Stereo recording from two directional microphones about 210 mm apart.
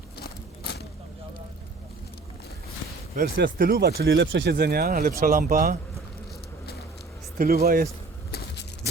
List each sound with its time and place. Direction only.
0.2 s a sound: 50° left (ahead or behind)
3.2 s speech: 45° right (ahead or behind)
7.3 s speech: 45° right (ahead or behind)
8.3 s vehicle: 50° left (ahead or behind)